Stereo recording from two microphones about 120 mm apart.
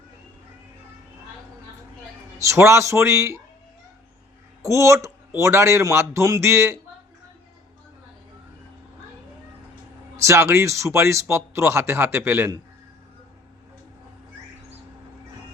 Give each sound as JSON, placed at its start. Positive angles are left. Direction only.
{"t": 2.4, "sound": "a man's voice", "side_deg": -25}
{"t": 4.6, "sound": "a man's voice", "side_deg": -25}
{"t": 10.2, "sound": "a man's voice", "side_deg": -25}